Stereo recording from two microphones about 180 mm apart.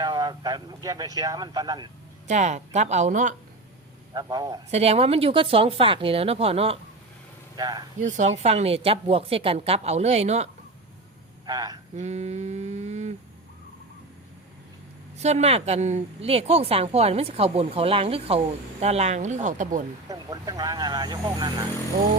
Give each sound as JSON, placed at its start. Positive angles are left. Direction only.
{"t": 0.0, "sound": "speech", "side_deg": -20}
{"t": 2.2, "sound": "a woman's voice", "side_deg": -40}
{"t": 4.1, "sound": "speech", "side_deg": -20}
{"t": 4.7, "sound": "a woman's voice", "side_deg": -35}
{"t": 7.5, "sound": "speech", "side_deg": -20}
{"t": 8.0, "sound": "a woman's voice", "side_deg": -40}
{"t": 11.4, "sound": "speech", "side_deg": -20}
{"t": 11.9, "sound": "mantra", "side_deg": -40}
{"t": 15.2, "sound": "a woman's voice", "side_deg": -35}
{"t": 20.1, "sound": "speech", "side_deg": -20}